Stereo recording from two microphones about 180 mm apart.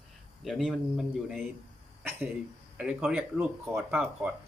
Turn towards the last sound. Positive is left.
turn(degrees=-10)  # may be behind; listen again after turning